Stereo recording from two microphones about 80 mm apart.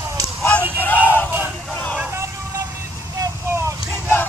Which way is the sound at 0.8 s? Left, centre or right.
Left.